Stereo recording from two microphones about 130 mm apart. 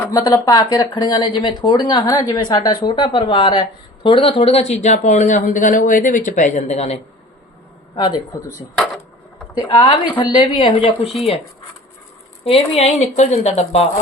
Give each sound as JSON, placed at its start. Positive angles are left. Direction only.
{"t": 0.1, "sound": "speech", "side_deg": 25}
{"t": 7.9, "sound": "speech", "side_deg": 35}
{"t": 9.6, "sound": "speech", "side_deg": 40}
{"t": 12.5, "sound": "speech", "side_deg": 50}